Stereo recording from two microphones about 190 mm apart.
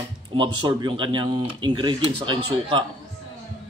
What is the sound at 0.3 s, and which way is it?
A man's voice, 25° right (ahead or behind).